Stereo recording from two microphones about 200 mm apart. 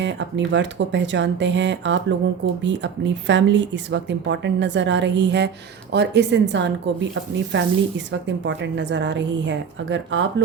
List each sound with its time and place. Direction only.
0.0 s speech: 65° right (ahead or behind)